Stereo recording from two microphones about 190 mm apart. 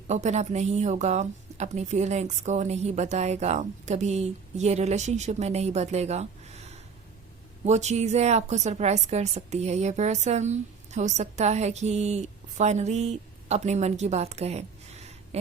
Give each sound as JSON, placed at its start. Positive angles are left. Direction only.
{"t": 0.1, "sound": "a woman's voice", "side_deg": -35}